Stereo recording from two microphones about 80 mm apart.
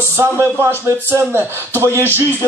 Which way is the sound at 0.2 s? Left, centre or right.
Right.